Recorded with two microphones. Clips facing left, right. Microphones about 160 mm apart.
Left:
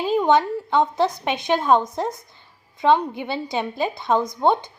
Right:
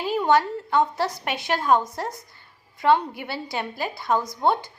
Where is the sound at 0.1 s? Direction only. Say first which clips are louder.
Left 2 dB; 20° left (ahead or behind).